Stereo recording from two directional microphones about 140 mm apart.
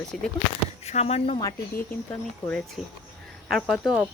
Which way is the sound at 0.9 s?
50° left (ahead or behind).